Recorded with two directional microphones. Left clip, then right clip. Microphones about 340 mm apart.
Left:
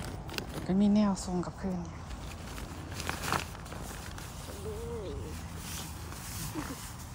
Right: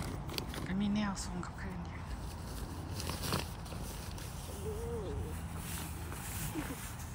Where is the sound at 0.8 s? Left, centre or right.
Centre.